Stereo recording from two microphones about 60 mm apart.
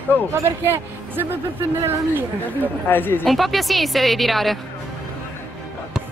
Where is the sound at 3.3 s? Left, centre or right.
Centre.